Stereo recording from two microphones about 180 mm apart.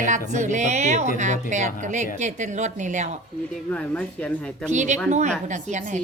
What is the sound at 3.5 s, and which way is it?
Speech, 5° left (ahead or behind).